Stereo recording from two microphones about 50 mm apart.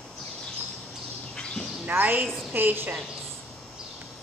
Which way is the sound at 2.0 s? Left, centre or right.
Right.